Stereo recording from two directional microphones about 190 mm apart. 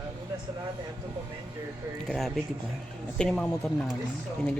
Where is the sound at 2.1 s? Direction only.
Centre (ahead or behind).